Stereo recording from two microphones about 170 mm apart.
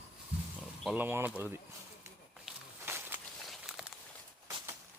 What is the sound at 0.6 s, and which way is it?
Speech, 5° right (ahead or behind).